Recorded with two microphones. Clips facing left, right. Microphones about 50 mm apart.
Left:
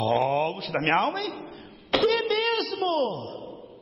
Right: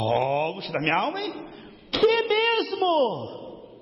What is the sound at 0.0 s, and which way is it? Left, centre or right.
A man's voice, centre.